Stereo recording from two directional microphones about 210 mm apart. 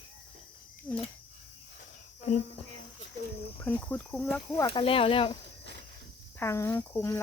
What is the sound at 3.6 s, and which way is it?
Speech, 10° left (ahead or behind).